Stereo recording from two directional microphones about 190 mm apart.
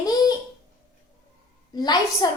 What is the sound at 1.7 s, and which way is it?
Speech, 20° left (ahead or behind).